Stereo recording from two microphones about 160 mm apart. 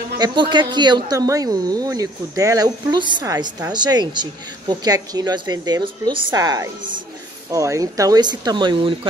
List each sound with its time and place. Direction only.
0.2 s speech: 30° right (ahead or behind)